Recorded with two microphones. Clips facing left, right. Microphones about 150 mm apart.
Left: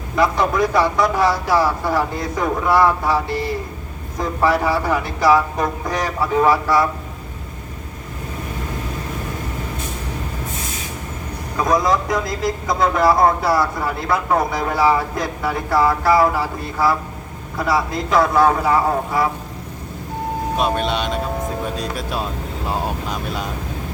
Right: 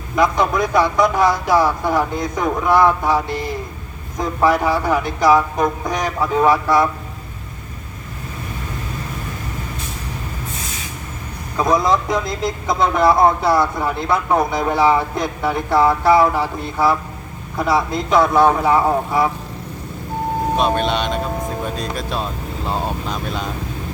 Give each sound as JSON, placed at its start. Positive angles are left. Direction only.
{"t": 0.2, "sound": "speech", "side_deg": -15}
{"t": 11.7, "sound": "speech", "side_deg": -25}
{"t": 20.6, "sound": "speech", "side_deg": 5}